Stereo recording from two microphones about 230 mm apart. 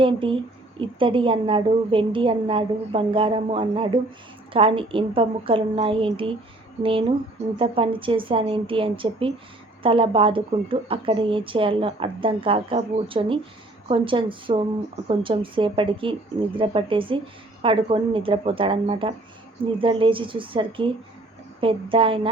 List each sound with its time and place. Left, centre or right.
0.0 s speech: right
7.5 s speech: right